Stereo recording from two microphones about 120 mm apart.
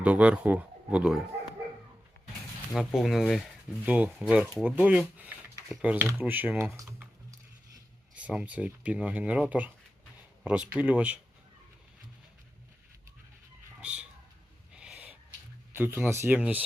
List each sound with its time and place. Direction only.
0.0 s speech: 10° right (ahead or behind)
2.7 s speech: centre (ahead or behind)
8.1 s speech: 10° right (ahead or behind)
13.8 s chicken: 10° right (ahead or behind)
14.7 s owl: 10° right (ahead or behind)
15.7 s speech: 20° right (ahead or behind)